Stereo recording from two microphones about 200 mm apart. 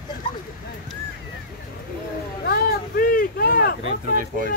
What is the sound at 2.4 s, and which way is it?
Vehicle, 50° left (ahead or behind).